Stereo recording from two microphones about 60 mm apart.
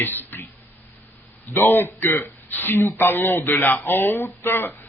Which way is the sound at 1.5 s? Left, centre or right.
Left.